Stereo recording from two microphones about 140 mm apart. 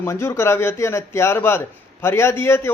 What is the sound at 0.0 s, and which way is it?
Speech, 20° left (ahead or behind).